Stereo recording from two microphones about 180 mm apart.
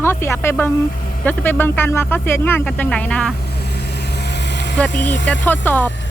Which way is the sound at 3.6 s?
65° left (ahead or behind).